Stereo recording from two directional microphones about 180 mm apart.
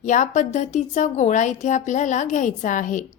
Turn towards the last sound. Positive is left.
turn(degrees=45)  # may be behind; listen again after turning